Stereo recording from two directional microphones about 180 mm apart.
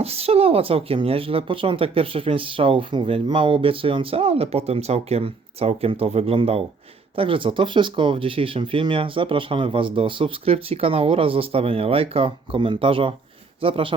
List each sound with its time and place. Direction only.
0.0 s speech: 35° right (ahead or behind)